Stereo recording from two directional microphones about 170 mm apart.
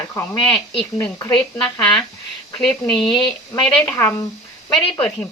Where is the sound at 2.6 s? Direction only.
5° left (ahead or behind).